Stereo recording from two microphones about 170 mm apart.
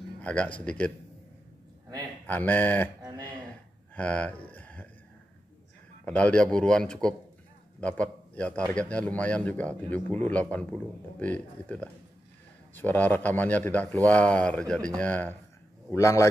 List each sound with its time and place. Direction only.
0.2 s speech: 5° left (ahead or behind)
2.2 s speech: 10° left (ahead or behind)
3.9 s speech: 10° left (ahead or behind)
4.5 s a sound: 10° left (ahead or behind)
6.0 s a man's voice: 10° left (ahead or behind)